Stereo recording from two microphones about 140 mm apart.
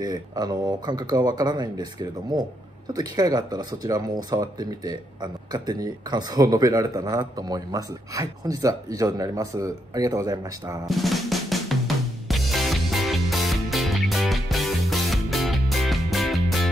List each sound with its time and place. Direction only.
0.0 s speech: 30° right (ahead or behind)
10.9 s drum: centre (ahead or behind)
12.3 s music: centre (ahead or behind)